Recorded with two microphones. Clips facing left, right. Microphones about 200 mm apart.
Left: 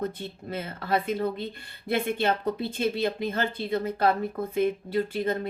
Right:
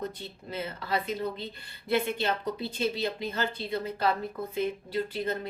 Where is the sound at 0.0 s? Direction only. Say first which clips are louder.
Left 5 dB; 50° left (ahead or behind).